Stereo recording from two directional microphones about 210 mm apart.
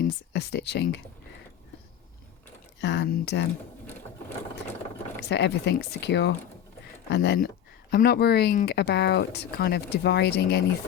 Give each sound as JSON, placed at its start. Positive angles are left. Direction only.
{"t": 0.0, "sound": "speech", "side_deg": 55}
{"t": 2.8, "sound": "speech", "side_deg": 55}
{"t": 5.3, "sound": "speech", "side_deg": 55}